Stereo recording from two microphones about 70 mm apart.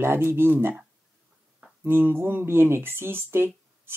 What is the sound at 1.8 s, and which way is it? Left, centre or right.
Speech, right.